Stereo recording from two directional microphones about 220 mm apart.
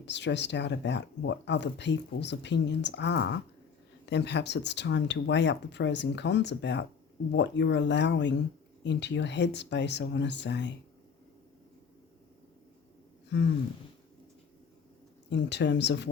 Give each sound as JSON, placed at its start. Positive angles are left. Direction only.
{"t": 0.0, "sound": "speech", "side_deg": 50}
{"t": 13.3, "sound": "speech", "side_deg": 50}
{"t": 15.3, "sound": "speech", "side_deg": 55}